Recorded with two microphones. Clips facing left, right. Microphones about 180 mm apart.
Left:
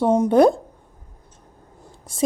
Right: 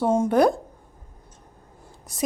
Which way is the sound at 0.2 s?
25° left (ahead or behind).